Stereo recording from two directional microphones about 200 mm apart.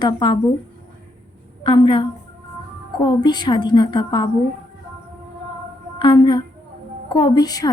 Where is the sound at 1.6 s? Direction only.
25° left (ahead or behind).